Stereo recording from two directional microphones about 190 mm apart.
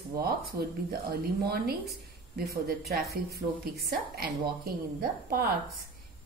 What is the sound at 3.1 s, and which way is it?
Speech, 55° right (ahead or behind).